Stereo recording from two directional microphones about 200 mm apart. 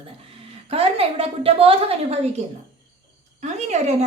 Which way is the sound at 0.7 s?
30° right (ahead or behind).